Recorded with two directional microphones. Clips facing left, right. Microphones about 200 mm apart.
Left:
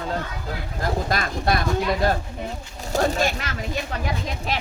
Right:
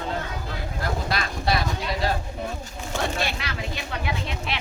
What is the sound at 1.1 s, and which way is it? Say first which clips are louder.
Speech: left 1 dB; 50° left (ahead or behind).